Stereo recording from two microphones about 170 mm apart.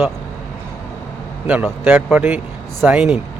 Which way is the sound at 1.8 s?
10° right (ahead or behind).